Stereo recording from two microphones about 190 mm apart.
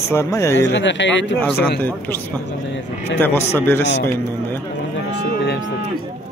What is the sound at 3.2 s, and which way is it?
Speech, 10° left (ahead or behind).